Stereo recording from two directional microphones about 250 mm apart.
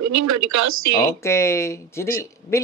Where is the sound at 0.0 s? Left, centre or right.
Right.